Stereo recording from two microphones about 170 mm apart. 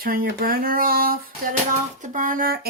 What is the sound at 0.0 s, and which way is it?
Speech, 60° right (ahead or behind).